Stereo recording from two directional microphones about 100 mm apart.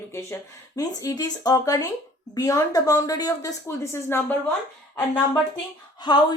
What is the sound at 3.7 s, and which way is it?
Speech, 25° left (ahead or behind).